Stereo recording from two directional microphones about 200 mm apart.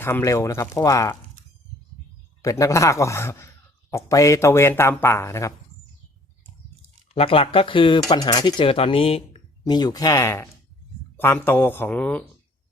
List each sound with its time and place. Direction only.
0.0 s speech: 10° left (ahead or behind)
2.4 s speech: 15° left (ahead or behind)
7.1 s speech: 30° left (ahead or behind); by 12.2 s 5° left (ahead or behind)